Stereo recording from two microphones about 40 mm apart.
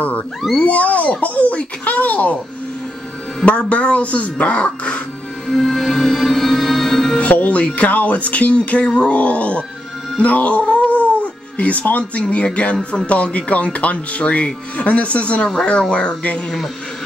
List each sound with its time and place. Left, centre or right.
0.6 s speech: left
1.2 s a sound: left
3.4 s music: left
5.5 s music: centre
7.2 s music: left
15.4 s speech: left